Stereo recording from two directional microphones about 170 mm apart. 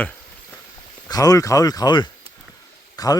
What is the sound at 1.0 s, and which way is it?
Speech, 20° left (ahead or behind).